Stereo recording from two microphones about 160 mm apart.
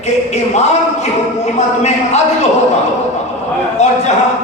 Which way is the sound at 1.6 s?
45° left (ahead or behind).